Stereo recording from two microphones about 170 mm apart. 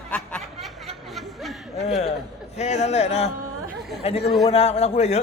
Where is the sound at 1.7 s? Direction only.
40° left (ahead or behind).